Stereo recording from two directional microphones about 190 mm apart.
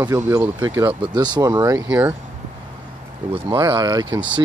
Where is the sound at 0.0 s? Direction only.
20° right (ahead or behind).